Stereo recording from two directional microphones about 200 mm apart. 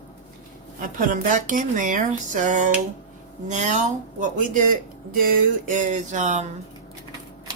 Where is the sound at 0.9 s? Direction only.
40° right (ahead or behind).